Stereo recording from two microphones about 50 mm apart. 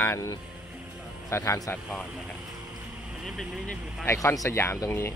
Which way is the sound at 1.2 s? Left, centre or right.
Left.